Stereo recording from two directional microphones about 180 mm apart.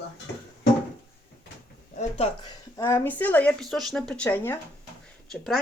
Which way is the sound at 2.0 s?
35° left (ahead or behind).